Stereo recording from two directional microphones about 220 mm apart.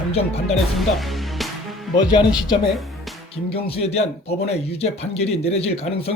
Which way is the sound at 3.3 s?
25° left (ahead or behind).